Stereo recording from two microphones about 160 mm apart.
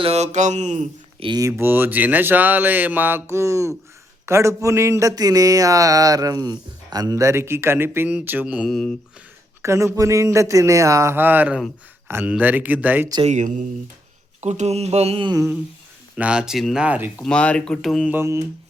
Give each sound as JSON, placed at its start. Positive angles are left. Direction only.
{"t": 0.0, "sound": "mantra", "side_deg": -40}
{"t": 1.2, "sound": "speech", "side_deg": -25}
{"t": 9.6, "sound": "speech", "side_deg": -20}
{"t": 13.2, "sound": "mantra", "side_deg": -50}
{"t": 16.1, "sound": "speech", "side_deg": -5}
{"t": 17.2, "sound": "speech", "side_deg": 5}
{"t": 18.1, "sound": "speech", "side_deg": -15}